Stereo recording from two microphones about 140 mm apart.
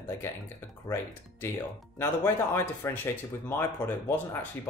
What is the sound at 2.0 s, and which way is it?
Speech, 15° left (ahead or behind).